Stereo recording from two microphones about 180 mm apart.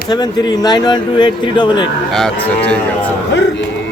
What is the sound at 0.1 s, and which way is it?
Speech, 25° left (ahead or behind).